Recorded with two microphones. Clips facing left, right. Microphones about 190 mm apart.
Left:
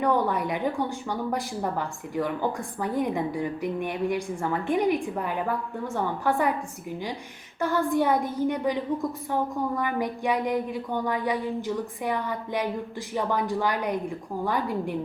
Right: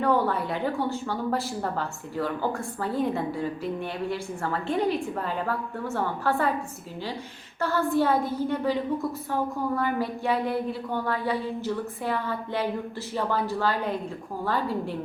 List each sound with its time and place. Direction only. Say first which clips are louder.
0.0 s a woman's voice: even; 15° left (ahead or behind)
7.6 s a woman's voice: even; 15° left (ahead or behind)